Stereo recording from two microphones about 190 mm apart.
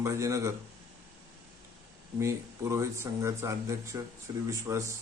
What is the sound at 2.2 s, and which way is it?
Speech, 15° right (ahead or behind).